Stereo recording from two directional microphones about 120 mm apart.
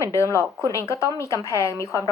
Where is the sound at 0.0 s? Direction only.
25° left (ahead or behind).